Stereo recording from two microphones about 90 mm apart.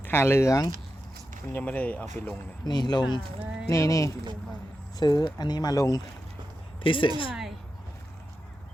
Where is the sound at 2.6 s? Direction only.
50° left (ahead or behind).